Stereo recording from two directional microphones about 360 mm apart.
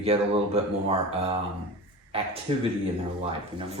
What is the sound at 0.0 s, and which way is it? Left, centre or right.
Speech, centre.